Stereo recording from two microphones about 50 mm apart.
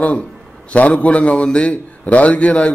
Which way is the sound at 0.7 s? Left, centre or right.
Left.